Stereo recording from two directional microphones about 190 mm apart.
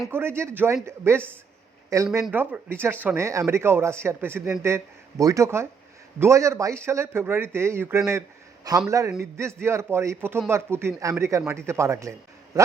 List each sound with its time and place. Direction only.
0.1 s speech: 10° right (ahead or behind)
2.2 s speech: 10° right (ahead or behind)